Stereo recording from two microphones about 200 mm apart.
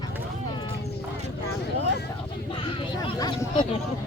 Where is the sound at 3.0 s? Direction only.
25° left (ahead or behind).